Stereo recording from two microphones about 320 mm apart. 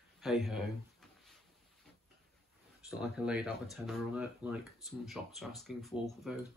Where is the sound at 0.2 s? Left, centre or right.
Centre.